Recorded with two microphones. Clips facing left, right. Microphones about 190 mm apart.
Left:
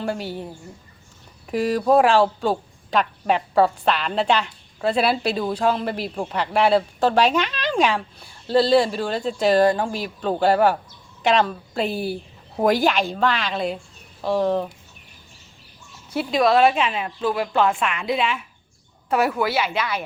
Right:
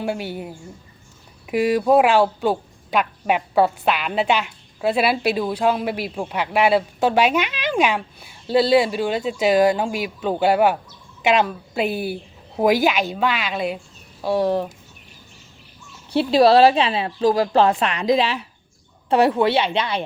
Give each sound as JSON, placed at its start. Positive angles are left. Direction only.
{"t": 0.0, "sound": "a woman's voice", "side_deg": -5}
{"t": 16.1, "sound": "a woman's voice", "side_deg": -35}